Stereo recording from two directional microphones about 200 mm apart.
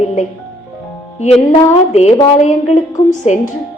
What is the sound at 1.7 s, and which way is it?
A woman's voice, 35° left (ahead or behind).